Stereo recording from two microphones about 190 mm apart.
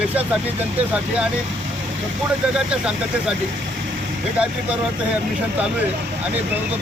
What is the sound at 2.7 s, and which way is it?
Speech, 5° right (ahead or behind).